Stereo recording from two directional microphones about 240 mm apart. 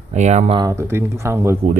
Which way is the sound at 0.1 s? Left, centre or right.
Right.